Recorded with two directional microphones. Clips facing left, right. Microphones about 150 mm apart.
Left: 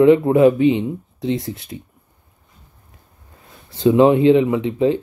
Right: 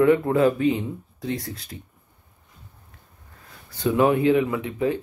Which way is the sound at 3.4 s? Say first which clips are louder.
Left 9 dB; 25° left (ahead or behind).